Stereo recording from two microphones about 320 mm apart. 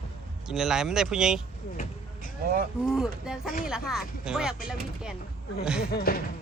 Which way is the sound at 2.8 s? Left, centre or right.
Centre.